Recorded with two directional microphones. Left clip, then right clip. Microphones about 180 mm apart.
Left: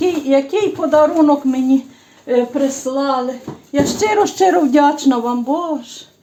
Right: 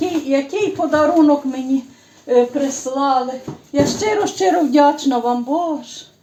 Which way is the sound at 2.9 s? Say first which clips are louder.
Left 3 dB; 40° left (ahead or behind).